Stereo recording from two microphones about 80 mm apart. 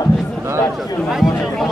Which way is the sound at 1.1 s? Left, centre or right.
Centre.